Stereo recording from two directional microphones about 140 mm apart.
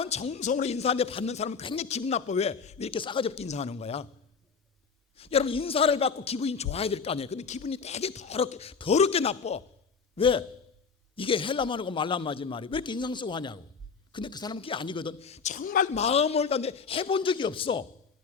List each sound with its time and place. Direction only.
0.0 s a man's voice: 50° left (ahead or behind)
5.1 s a man's voice: 45° left (ahead or behind); by 15.9 s 75° left (ahead or behind)
16.0 s a man's voice: 50° left (ahead or behind)